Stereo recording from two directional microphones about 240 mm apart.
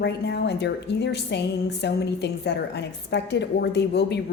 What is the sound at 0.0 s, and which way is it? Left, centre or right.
A woman's voice, left.